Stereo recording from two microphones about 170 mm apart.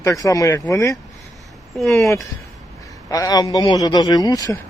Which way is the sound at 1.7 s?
Centre (ahead or behind).